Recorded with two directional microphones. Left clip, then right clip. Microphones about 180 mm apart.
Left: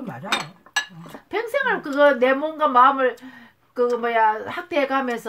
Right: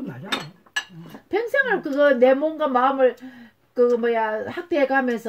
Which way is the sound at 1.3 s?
35° right (ahead or behind).